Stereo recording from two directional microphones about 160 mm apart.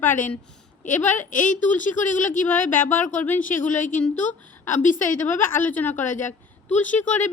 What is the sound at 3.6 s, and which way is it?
Speech, 55° left (ahead or behind).